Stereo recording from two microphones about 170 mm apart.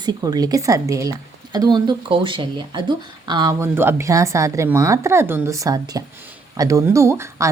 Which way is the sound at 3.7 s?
15° right (ahead or behind).